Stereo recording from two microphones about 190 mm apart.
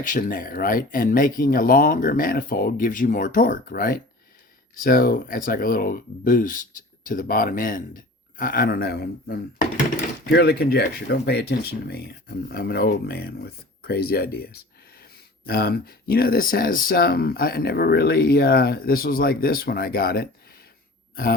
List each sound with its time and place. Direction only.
0.0 s speech: 45° left (ahead or behind)